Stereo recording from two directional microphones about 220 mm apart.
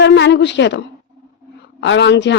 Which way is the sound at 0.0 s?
55° left (ahead or behind).